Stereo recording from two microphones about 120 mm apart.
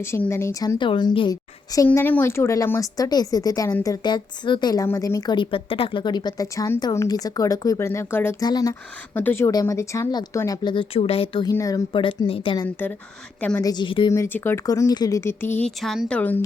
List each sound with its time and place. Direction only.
0.0 s a woman's voice: 20° left (ahead or behind)
0.8 s speech: 40° left (ahead or behind)
1.9 s a woman's voice: 15° left (ahead or behind)
8.4 s speech: 30° left (ahead or behind)
9.1 s speech: 15° left (ahead or behind)
9.5 s a woman's voice: 30° left (ahead or behind); by 11.4 s 50° left (ahead or behind)
11.5 s a woman's voice: 30° left (ahead or behind)
11.9 s speech: 45° left (ahead or behind)
12.8 s speech: 15° left (ahead or behind)
13.6 s speech: 30° left (ahead or behind)
13.8 s speech: 45° left (ahead or behind)
14.1 s a woman's voice: 20° left (ahead or behind)
14.7 s a woman's voice: 30° left (ahead or behind); by 15.7 s 15° left (ahead or behind)
15.8 s speech: centre (ahead or behind)